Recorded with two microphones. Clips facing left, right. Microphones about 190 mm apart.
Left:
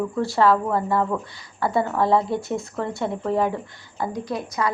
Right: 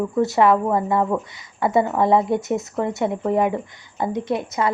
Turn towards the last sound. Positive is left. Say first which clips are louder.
# right 3 dB
turn(degrees=-25)  # may be behind; listen again after turning